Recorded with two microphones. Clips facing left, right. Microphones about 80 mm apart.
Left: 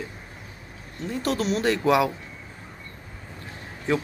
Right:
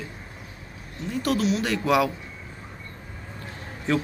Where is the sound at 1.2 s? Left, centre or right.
Left.